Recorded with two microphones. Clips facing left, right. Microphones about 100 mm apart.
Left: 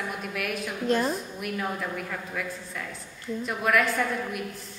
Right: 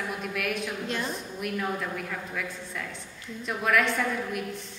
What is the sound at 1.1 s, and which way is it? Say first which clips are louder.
A woman's voice: left 1 dB; centre (ahead or behind).